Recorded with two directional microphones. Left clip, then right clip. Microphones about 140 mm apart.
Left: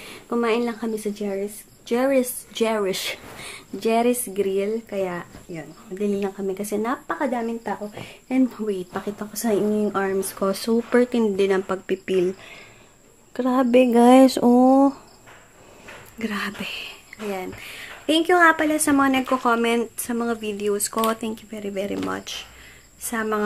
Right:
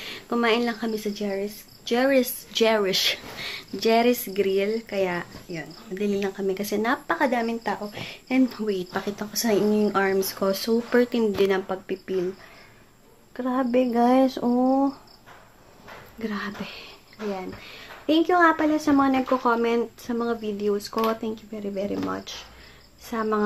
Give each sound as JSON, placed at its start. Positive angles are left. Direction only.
{"t": 0.0, "sound": "a woman's voice", "side_deg": 10}
{"t": 10.2, "sound": "speech", "side_deg": 20}
{"t": 11.6, "sound": "speech", "side_deg": 50}
{"t": 13.4, "sound": "a sound", "side_deg": 60}
{"t": 16.2, "sound": "a woman's voice", "side_deg": 20}